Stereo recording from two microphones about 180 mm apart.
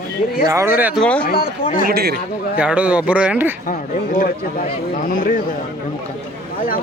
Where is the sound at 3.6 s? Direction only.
50° left (ahead or behind).